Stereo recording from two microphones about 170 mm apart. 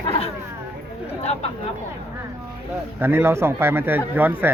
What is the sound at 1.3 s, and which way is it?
Speech, 40° left (ahead or behind).